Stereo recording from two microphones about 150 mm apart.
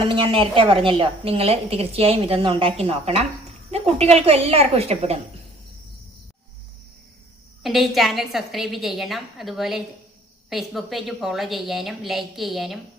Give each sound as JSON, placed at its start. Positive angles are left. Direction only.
{"t": 0.1, "sound": "a woman's voice", "side_deg": -35}
{"t": 7.6, "sound": "a woman's voice", "side_deg": 0}